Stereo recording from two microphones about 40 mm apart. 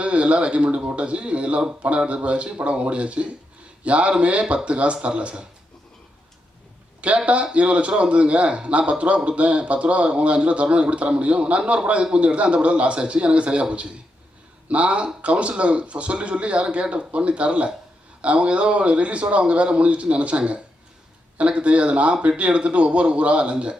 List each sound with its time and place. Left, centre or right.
0.0 s a man's voice: right
7.3 s a man's voice: right